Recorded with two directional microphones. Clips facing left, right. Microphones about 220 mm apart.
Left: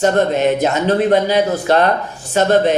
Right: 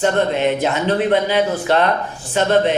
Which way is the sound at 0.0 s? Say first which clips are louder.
Left 3 dB; 45° left (ahead or behind).